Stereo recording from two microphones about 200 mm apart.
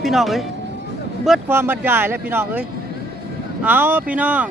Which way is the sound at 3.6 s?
10° right (ahead or behind).